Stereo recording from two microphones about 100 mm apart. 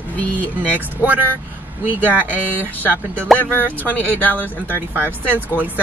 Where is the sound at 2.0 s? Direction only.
15° right (ahead or behind).